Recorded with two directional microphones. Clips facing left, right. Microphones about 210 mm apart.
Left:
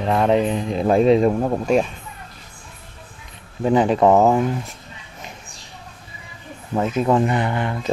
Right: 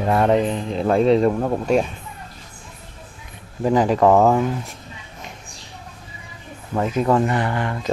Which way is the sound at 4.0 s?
5° left (ahead or behind).